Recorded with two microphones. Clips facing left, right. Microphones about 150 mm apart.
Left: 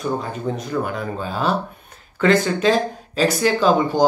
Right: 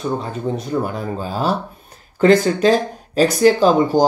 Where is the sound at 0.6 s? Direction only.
40° right (ahead or behind).